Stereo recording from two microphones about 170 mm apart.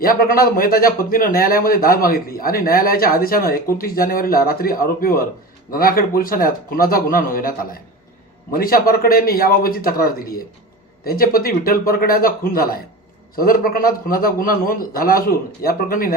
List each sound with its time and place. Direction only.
0.0 s a man's voice: 60° left (ahead or behind)